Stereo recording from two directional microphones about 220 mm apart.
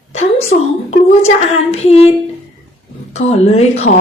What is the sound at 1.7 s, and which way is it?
Speech, 30° left (ahead or behind).